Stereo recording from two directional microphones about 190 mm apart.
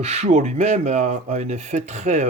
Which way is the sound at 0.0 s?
35° right (ahead or behind).